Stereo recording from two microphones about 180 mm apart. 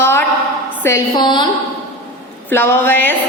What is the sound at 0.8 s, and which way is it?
Speech, 15° left (ahead or behind).